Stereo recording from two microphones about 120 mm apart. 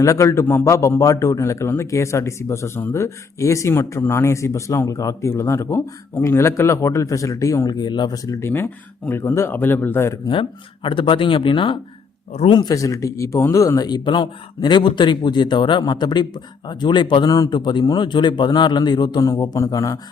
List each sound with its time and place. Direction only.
0.0 s a man's voice: 25° left (ahead or behind)
7.8 s a man's voice: 40° left (ahead or behind); by 10.2 s 20° left (ahead or behind)
10.8 s a man's voice: 45° left (ahead or behind); by 20.0 s 25° left (ahead or behind)